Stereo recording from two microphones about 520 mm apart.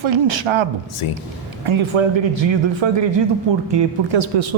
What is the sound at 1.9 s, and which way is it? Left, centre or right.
Speech, right.